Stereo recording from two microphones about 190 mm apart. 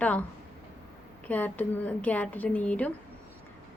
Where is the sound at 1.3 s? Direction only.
10° left (ahead or behind).